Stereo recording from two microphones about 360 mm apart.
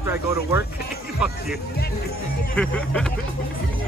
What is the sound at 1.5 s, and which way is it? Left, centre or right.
Speech, left.